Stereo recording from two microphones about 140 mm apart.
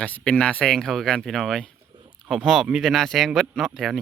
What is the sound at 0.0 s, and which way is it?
Speech, 10° left (ahead or behind).